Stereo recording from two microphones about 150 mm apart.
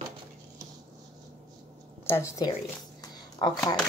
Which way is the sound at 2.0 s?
15° left (ahead or behind).